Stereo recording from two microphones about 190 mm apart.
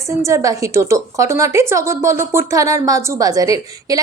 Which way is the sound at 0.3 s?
15° right (ahead or behind).